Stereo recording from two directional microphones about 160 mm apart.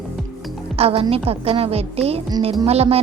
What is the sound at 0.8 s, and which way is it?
A woman's voice, 35° right (ahead or behind).